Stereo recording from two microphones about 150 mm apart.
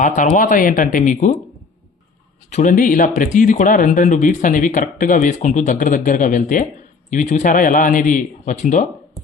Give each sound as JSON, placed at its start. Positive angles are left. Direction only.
{"t": 0.0, "sound": "speech", "side_deg": 60}
{"t": 2.5, "sound": "speech", "side_deg": 60}